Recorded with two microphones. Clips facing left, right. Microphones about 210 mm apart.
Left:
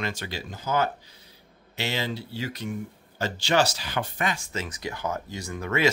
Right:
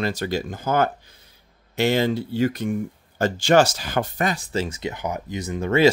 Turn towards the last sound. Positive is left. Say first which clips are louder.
# right 7 dB
turn(degrees=-30)  # may be behind; listen again after turning